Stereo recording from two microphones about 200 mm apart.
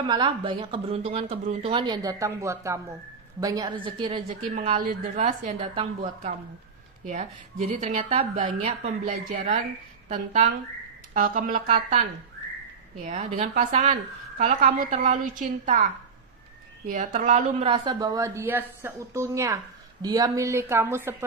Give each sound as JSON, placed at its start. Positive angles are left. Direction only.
{"t": 0.1, "sound": "speech", "side_deg": -20}
{"t": 4.5, "sound": "a woman's voice", "side_deg": -40}